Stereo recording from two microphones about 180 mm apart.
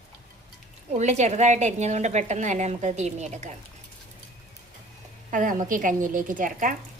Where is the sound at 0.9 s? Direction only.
40° right (ahead or behind).